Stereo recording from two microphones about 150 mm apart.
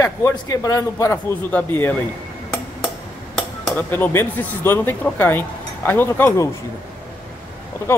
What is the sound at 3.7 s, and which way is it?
Speech, 15° left (ahead or behind).